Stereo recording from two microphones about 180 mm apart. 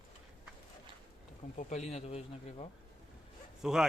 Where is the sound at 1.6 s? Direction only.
40° left (ahead or behind).